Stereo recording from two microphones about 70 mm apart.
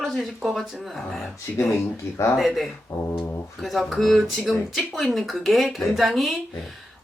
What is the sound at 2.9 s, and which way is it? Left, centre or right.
Brass instrument, left.